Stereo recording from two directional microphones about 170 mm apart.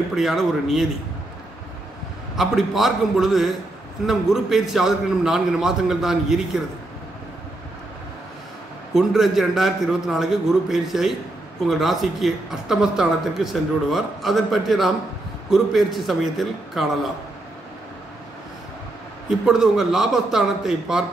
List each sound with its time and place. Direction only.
0.1 s speech: centre (ahead or behind)
2.3 s speech: centre (ahead or behind)
8.9 s speech: centre (ahead or behind)
19.4 s speech: 5° right (ahead or behind)